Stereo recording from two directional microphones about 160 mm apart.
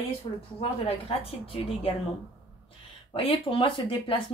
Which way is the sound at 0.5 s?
35° left (ahead or behind).